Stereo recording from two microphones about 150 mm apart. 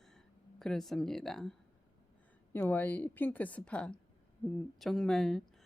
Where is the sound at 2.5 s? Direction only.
10° left (ahead or behind).